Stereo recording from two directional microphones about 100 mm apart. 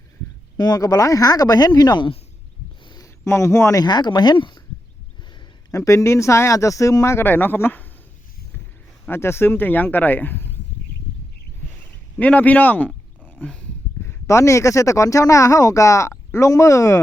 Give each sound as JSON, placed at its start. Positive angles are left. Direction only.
{"t": 0.5, "sound": "speech", "side_deg": 40}
{"t": 3.0, "sound": "a man's voice", "side_deg": 30}
{"t": 3.8, "sound": "speech", "side_deg": 45}
{"t": 5.7, "sound": "speech", "side_deg": 30}
{"t": 9.0, "sound": "speech", "side_deg": 25}
{"t": 12.2, "sound": "speech", "side_deg": 15}
{"t": 14.0, "sound": "speech", "side_deg": 25}